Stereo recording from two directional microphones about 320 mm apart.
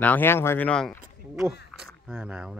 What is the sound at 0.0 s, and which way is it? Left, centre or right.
Speech, centre.